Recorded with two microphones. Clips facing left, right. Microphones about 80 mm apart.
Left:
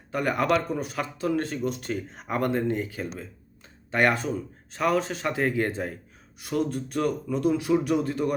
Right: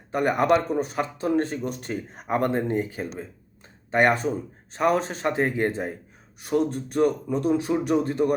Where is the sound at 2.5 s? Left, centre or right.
Right.